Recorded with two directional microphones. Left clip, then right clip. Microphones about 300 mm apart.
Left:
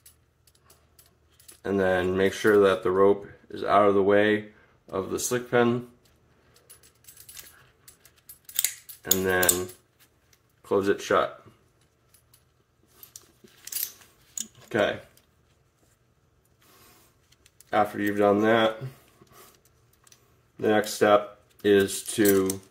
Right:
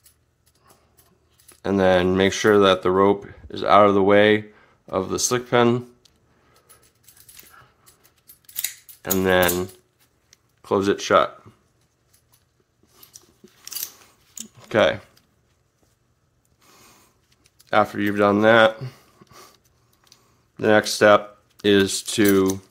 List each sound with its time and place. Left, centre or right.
1.6 s speech: right
9.0 s speech: right
14.7 s speech: right
17.6 s speech: right
20.5 s speech: right